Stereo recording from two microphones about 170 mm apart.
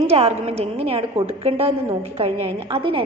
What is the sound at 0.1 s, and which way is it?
A woman's voice, 35° right (ahead or behind).